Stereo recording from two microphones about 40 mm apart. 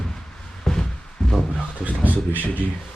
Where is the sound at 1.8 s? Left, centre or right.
Right.